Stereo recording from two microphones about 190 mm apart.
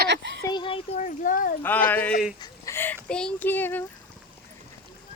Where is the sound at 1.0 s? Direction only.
45° left (ahead or behind).